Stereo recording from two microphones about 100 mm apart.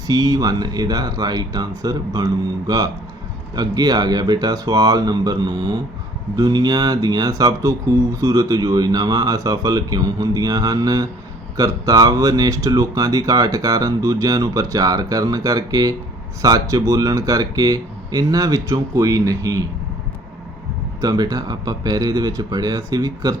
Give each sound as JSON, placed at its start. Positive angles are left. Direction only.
{"t": 0.1, "sound": "speech", "side_deg": -40}
{"t": 21.0, "sound": "speech", "side_deg": -40}